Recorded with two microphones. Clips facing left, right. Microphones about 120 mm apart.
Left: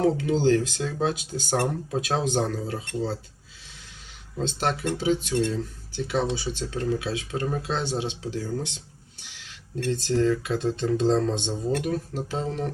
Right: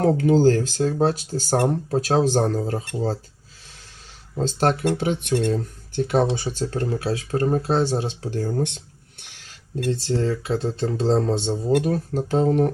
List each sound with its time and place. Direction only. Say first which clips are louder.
0.0 s speech: right 5 dB; 45° right (ahead or behind)
4.4 s speech: right 6 dB; 45° right (ahead or behind)
8.2 s a sound: right 5 dB; 45° right (ahead or behind)
9.9 s speech: left 1 dB; 30° right (ahead or behind); by 12.7 s 50° right (ahead or behind)